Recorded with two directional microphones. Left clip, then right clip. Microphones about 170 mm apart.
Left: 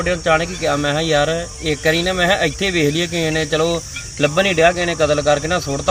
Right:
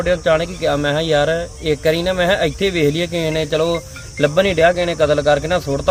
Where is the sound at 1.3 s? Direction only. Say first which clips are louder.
Right 2 dB; 50° right (ahead or behind).